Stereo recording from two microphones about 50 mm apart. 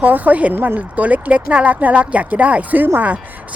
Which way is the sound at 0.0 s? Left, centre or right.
Right.